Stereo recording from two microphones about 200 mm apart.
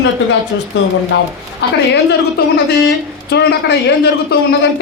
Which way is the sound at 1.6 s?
60° left (ahead or behind).